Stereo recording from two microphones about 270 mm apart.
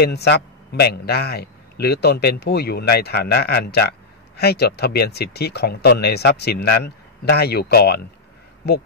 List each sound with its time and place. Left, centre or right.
0.0 s a man's voice: left